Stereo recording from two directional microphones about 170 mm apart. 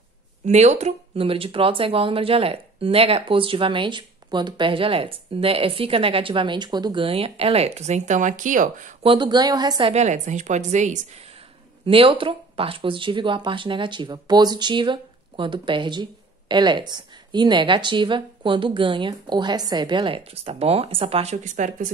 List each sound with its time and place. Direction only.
0.5 s speech: 40° right (ahead or behind)
9.0 s speech: 30° right (ahead or behind)
11.8 s speech: 30° right (ahead or behind)